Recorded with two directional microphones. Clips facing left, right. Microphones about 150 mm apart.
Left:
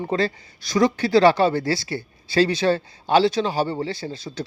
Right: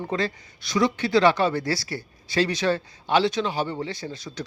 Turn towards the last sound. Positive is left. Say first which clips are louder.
# left 3 dB
turn(degrees=30)  # may be behind; listen again after turning